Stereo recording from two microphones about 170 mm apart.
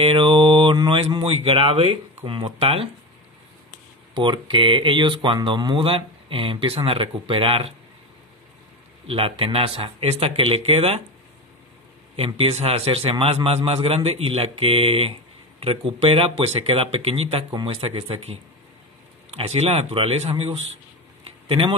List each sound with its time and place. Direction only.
0.0 s speech: 30° right (ahead or behind)
4.1 s speech: 30° right (ahead or behind)
9.0 s speech: 35° right (ahead or behind)
12.2 s speech: 35° right (ahead or behind)